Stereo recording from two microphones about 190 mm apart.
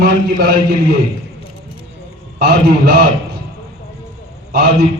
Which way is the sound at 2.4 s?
55° right (ahead or behind).